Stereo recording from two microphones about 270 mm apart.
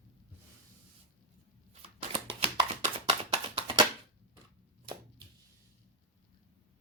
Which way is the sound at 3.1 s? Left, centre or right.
Right.